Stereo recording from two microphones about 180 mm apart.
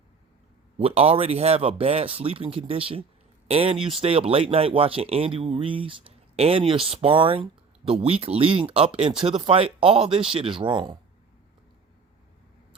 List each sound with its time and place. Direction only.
0.8 s speech: 35° right (ahead or behind)